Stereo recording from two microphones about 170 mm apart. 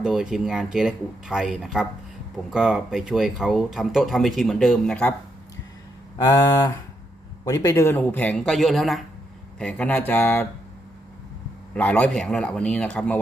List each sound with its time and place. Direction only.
0.0 s speech: 5° right (ahead or behind)
6.1 s a sound: 20° left (ahead or behind)
7.4 s speech: 20° left (ahead or behind)
11.7 s speech: 10° left (ahead or behind)